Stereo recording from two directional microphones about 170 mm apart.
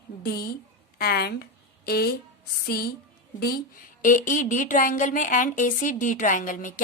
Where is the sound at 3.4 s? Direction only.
65° left (ahead or behind).